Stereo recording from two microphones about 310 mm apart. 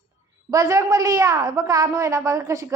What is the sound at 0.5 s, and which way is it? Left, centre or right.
A woman's voice, centre.